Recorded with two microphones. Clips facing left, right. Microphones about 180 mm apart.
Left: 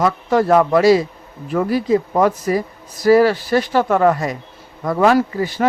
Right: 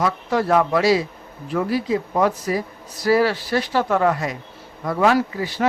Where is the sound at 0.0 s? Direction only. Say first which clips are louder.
Left 5 dB; 50° left (ahead or behind).